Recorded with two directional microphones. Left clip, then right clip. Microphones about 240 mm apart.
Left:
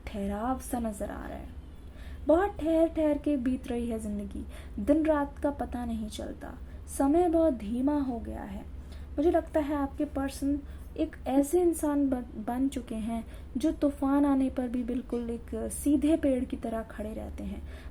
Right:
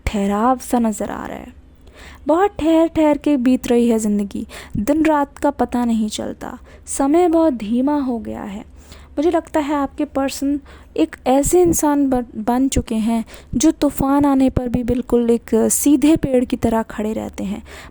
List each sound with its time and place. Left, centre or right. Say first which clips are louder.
0.0 s a woman's voice: right 16 dB; right